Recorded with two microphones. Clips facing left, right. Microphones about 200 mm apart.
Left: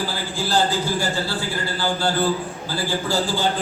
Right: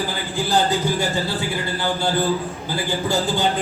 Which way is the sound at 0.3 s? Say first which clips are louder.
Right 2 dB; 15° right (ahead or behind).